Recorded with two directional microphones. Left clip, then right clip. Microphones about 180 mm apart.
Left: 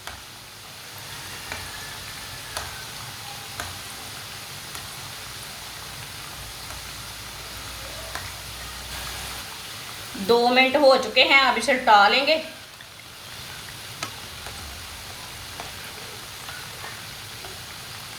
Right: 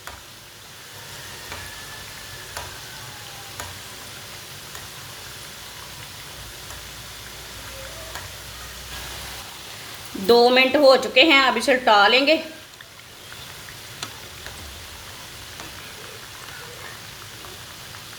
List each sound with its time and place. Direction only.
10.2 s a woman's voice: 60° right (ahead or behind)